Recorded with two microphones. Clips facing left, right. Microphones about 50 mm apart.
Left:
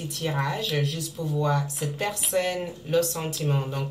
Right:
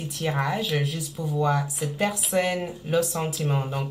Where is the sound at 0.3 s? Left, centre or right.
Centre.